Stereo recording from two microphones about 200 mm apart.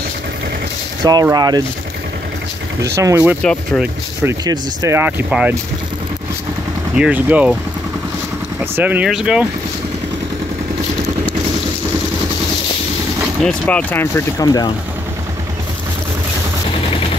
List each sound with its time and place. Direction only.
1.0 s speech: 20° right (ahead or behind)
2.8 s speech: 15° right (ahead or behind)
3.4 s speech: 5° left (ahead or behind)
4.2 s speech: 15° right (ahead or behind)
7.0 s speech: 5° right (ahead or behind)
8.7 s speech: 10° right (ahead or behind)
13.4 s speech: 5° left (ahead or behind)